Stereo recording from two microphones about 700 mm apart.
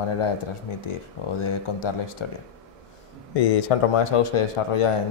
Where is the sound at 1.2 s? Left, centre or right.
Left.